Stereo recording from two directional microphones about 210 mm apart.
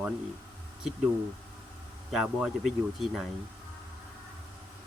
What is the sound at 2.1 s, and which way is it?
Speech, centre (ahead or behind).